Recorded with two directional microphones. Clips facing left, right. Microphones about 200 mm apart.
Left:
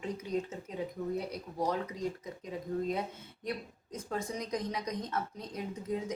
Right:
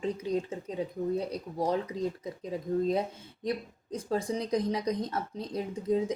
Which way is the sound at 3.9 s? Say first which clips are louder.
Right 6 dB; 30° right (ahead or behind).